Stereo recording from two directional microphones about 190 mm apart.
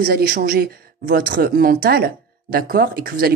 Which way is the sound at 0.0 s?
50° right (ahead or behind).